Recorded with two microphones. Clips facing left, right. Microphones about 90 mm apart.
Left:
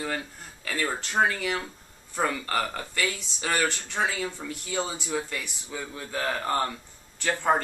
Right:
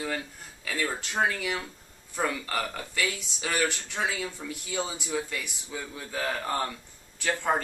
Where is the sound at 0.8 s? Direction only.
25° left (ahead or behind).